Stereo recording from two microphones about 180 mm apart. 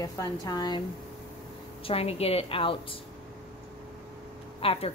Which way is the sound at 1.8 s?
35° left (ahead or behind).